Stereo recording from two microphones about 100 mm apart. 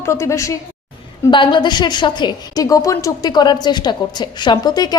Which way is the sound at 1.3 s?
50° left (ahead or behind).